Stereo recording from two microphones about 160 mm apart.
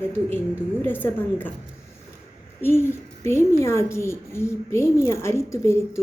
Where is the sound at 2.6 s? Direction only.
15° left (ahead or behind).